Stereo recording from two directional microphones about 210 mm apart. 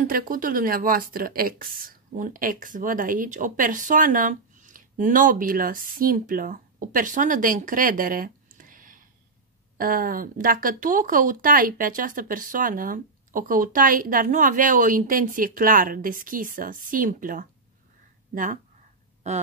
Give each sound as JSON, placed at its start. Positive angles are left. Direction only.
{"t": 0.0, "sound": "a woman's voice", "side_deg": -40}